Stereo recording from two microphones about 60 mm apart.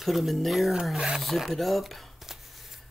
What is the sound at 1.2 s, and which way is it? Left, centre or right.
Shuffling cards, centre.